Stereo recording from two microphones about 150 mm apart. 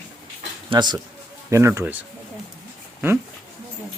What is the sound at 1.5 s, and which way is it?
Speech, 20° right (ahead or behind).